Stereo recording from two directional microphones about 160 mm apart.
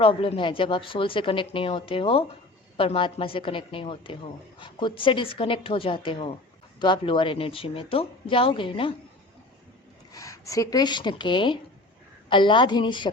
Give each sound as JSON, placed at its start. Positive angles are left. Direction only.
{"t": 0.0, "sound": "a woman's voice", "side_deg": 35}
{"t": 10.1, "sound": "speech", "side_deg": 20}